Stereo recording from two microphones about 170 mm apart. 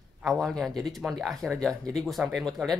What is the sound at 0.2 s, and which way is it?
Speech, centre (ahead or behind).